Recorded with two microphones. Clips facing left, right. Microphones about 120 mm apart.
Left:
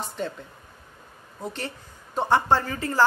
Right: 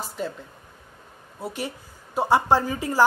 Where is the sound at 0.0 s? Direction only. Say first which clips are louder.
Even; 5° right (ahead or behind).